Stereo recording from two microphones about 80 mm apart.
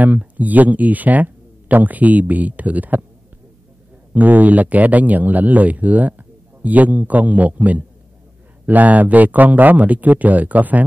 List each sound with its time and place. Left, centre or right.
0.0 s speech: centre
4.1 s speech: right